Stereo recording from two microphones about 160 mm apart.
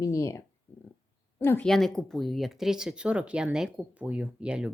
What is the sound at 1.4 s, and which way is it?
Speech, 15° left (ahead or behind).